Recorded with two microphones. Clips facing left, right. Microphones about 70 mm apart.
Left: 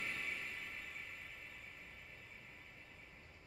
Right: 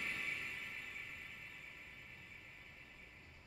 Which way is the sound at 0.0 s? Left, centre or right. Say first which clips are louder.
Even; centre.